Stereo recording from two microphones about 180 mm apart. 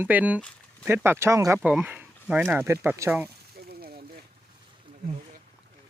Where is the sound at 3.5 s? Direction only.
55° right (ahead or behind).